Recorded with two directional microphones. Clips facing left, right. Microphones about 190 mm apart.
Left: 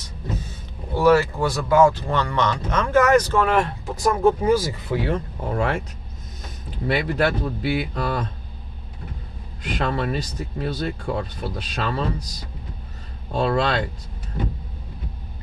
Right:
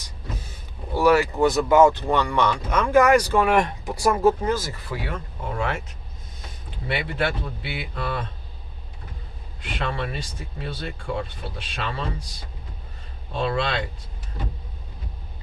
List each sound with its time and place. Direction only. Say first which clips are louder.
0.9 s speech: left 1 dB; 15° right (ahead or behind)
4.4 s speech: left 6 dB; 10° left (ahead or behind)
5.0 s speech: left 6 dB; 35° left (ahead or behind)
6.8 s speech: left 5 dB; 40° left (ahead or behind)
9.6 s speech: left 4 dB; 40° left (ahead or behind)
13.3 s speech: left 4 dB; 40° left (ahead or behind)